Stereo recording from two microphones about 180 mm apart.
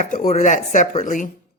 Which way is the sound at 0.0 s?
40° left (ahead or behind).